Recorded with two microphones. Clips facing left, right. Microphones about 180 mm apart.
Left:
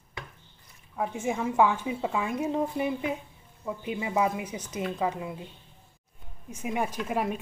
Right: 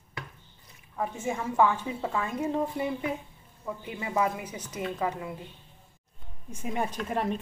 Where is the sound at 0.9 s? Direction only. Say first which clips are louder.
Left 2 dB; 10° left (ahead or behind).